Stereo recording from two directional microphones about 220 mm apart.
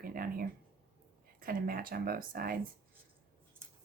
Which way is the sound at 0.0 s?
40° right (ahead or behind).